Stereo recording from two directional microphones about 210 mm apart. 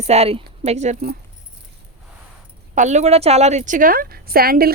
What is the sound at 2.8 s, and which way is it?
A woman's voice, 35° right (ahead or behind).